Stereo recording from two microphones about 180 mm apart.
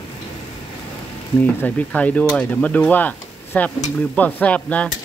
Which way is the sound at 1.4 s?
10° left (ahead or behind).